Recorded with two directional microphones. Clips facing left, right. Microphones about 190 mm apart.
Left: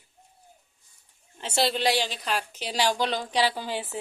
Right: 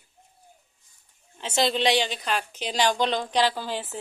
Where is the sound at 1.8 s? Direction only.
5° left (ahead or behind).